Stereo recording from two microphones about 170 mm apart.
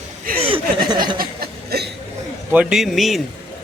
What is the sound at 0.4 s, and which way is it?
Chuckle, 30° right (ahead or behind).